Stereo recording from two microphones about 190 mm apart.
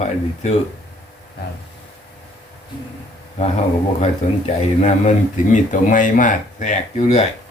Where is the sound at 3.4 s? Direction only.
35° left (ahead or behind).